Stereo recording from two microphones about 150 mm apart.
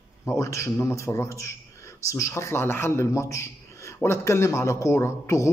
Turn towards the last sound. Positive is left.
turn(degrees=20)  # may be behind; listen again after turning